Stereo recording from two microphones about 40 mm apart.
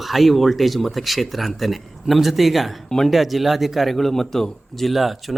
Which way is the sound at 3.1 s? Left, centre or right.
Centre.